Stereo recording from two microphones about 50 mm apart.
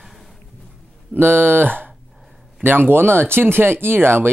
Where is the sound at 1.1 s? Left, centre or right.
Right.